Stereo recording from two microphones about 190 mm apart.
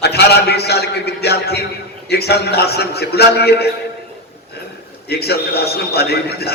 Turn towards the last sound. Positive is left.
turn(degrees=60)  # may be behind; listen again after turning